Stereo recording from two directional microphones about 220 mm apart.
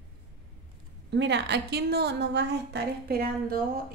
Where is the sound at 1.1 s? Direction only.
50° right (ahead or behind).